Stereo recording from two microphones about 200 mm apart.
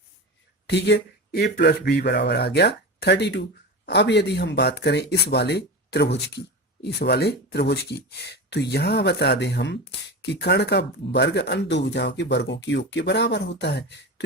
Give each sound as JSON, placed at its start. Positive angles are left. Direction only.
{"t": 0.7, "sound": "speech", "side_deg": 60}